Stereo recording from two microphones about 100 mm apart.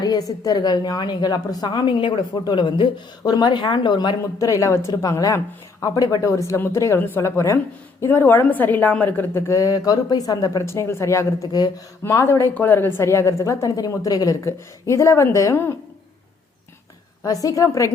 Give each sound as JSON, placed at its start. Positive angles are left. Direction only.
{"t": 0.0, "sound": "a woman's voice", "side_deg": 40}
{"t": 4.2, "sound": "a woman's voice", "side_deg": 35}
{"t": 10.7, "sound": "a woman's voice", "side_deg": 25}
{"t": 11.4, "sound": "a woman's voice", "side_deg": 40}
{"t": 12.0, "sound": "a woman's voice", "side_deg": 25}
{"t": 17.2, "sound": "a woman's voice", "side_deg": 35}